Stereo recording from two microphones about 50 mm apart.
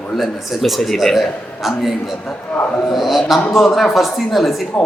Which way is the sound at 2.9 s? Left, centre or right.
Centre.